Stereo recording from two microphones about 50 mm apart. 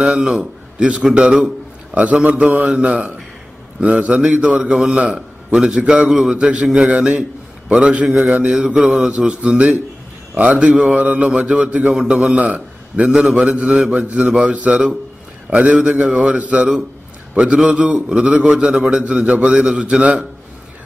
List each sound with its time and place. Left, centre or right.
0.0 s a man's voice: centre
6.0 s mantra: centre
6.3 s a man's voice: right
7.1 s a sound: centre
7.9 s mantra: centre
9.3 s a man's voice: right
16.3 s a man's voice: right
17.6 s a man's voice: right